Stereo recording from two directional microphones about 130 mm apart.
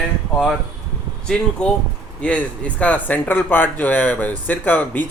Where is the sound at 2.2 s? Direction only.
10° left (ahead or behind).